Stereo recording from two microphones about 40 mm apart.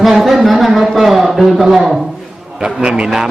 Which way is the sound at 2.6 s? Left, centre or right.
Right.